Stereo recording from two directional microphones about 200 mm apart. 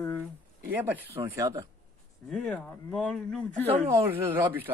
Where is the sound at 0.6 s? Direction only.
10° right (ahead or behind).